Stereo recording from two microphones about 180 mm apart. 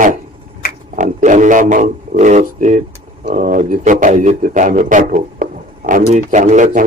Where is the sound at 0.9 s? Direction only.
45° right (ahead or behind).